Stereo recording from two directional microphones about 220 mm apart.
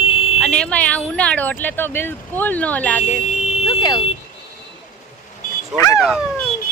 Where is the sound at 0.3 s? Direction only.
Centre (ahead or behind).